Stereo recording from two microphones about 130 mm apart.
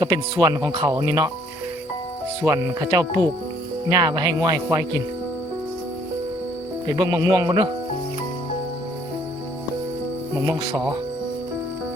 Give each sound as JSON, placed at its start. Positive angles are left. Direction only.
{"t": 0.0, "sound": "speech", "side_deg": -30}
{"t": 2.4, "sound": "speech", "side_deg": -25}
{"t": 6.8, "sound": "speech", "side_deg": -30}
{"t": 10.4, "sound": "speech", "side_deg": -25}